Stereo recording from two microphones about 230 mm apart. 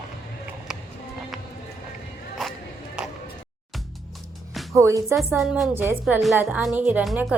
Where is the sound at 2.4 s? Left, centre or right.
Centre.